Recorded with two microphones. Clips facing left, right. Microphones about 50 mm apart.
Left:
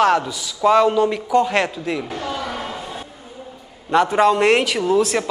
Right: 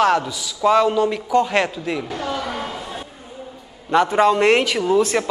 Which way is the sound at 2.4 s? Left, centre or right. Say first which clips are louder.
Even; centre.